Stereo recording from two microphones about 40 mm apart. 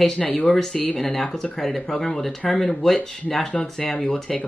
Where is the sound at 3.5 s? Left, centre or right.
Left.